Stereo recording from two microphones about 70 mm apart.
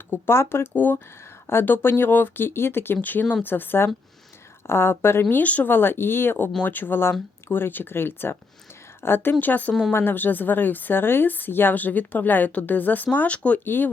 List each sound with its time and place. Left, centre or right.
0.1 s speech: left
5.3 s a woman's voice: left
13.7 s speech: left